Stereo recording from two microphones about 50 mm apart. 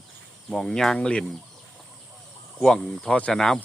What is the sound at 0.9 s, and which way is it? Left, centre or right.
Speech, left.